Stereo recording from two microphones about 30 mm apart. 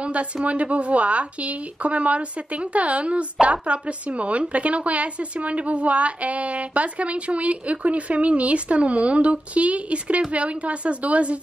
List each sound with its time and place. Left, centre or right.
0.0 s a woman's voice: right